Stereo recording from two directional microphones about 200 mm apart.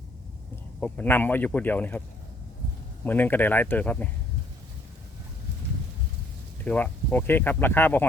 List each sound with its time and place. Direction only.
0.8 s speech: 10° left (ahead or behind)
3.0 s speech: 10° left (ahead or behind)
6.7 s speech: 10° left (ahead or behind)